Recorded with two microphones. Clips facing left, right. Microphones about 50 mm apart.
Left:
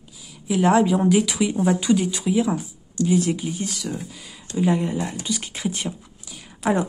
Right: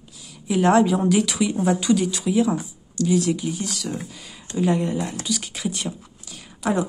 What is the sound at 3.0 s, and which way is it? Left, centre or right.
Speech, left.